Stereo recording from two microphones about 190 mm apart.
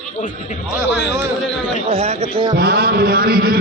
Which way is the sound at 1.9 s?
30° right (ahead or behind).